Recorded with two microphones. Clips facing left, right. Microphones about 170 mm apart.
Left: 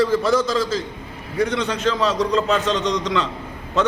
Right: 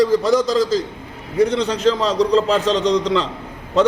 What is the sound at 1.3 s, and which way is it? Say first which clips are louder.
A man's voice: right 4 dB; 35° right (ahead or behind).